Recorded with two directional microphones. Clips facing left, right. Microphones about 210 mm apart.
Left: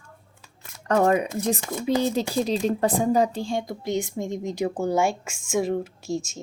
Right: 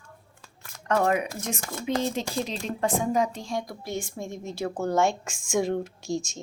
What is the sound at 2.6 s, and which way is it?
A woman's voice, 35° left (ahead or behind).